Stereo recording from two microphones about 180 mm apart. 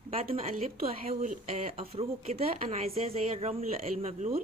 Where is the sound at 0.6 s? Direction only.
35° right (ahead or behind).